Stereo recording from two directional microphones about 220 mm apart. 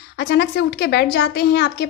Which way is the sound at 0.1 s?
50° left (ahead or behind).